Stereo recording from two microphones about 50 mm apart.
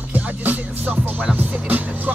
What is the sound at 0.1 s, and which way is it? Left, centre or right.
Music, right.